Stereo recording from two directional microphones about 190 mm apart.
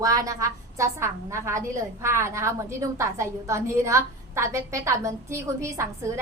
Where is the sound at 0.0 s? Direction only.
15° right (ahead or behind).